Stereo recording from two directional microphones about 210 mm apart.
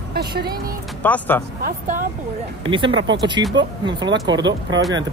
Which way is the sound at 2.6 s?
25° right (ahead or behind).